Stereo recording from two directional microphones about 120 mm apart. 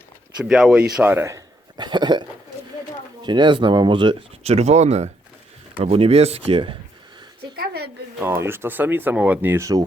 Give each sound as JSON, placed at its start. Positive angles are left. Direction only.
{"t": 0.4, "sound": "speech", "side_deg": -5}
{"t": 1.7, "sound": "speech", "side_deg": -40}
{"t": 3.2, "sound": "speech", "side_deg": -40}
{"t": 4.4, "sound": "speech", "side_deg": -65}
{"t": 5.8, "sound": "speech", "side_deg": -55}
{"t": 6.5, "sound": "speech", "side_deg": -45}
{"t": 8.2, "sound": "speech", "side_deg": -20}